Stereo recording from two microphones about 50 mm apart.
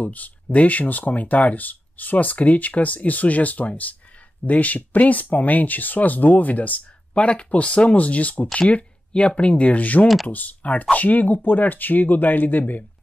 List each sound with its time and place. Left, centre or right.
0.0 s speech: left